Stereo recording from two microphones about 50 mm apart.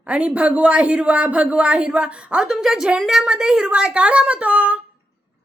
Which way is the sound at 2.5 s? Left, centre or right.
Centre.